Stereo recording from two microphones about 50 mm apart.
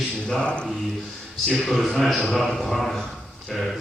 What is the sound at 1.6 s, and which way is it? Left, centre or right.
A man's voice, centre.